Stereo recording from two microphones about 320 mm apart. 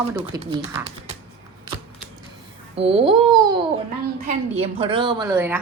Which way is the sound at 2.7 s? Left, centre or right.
Centre.